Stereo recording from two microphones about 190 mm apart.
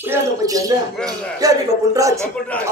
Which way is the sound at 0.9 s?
5° left (ahead or behind).